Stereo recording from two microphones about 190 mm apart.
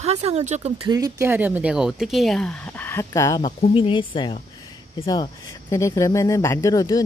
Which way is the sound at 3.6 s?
30° left (ahead or behind).